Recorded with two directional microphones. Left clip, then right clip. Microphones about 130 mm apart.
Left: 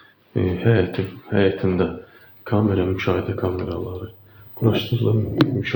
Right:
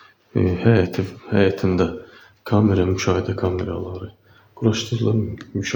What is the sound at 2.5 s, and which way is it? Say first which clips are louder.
Speech: right 2 dB; 55° right (ahead or behind).